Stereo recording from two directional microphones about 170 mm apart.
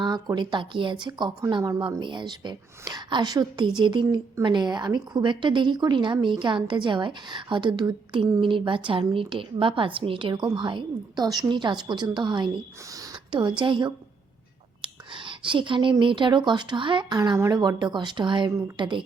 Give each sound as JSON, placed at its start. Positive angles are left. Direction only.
{"t": 0.0, "sound": "a woman's voice", "side_deg": -25}
{"t": 12.9, "sound": "a sound", "side_deg": -25}
{"t": 13.6, "sound": "a woman's voice", "side_deg": -30}